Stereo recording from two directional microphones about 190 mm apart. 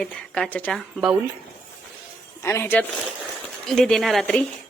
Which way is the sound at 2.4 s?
10° left (ahead or behind).